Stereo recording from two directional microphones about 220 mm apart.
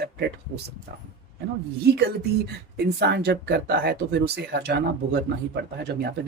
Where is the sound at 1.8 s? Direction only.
45° right (ahead or behind).